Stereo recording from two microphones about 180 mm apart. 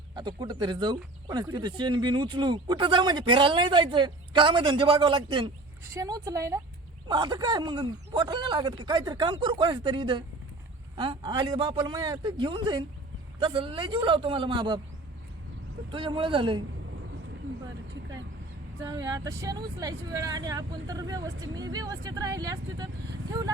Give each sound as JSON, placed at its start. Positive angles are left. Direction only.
{"t": 0.2, "sound": "speech", "side_deg": -25}
{"t": 15.9, "sound": "speech", "side_deg": -30}
{"t": 18.8, "sound": "speech", "side_deg": -20}